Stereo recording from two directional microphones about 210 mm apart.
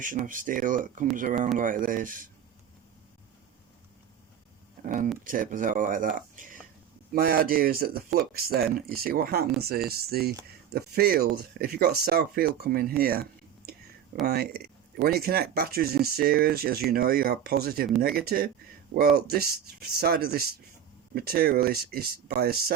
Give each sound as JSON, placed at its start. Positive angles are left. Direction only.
{"t": 0.0, "sound": "speech", "side_deg": -40}
{"t": 5.2, "sound": "speech", "side_deg": -40}
{"t": 14.3, "sound": "speech", "side_deg": -50}